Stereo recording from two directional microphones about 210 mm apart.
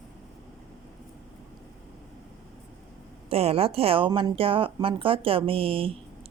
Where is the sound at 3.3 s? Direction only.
30° right (ahead or behind).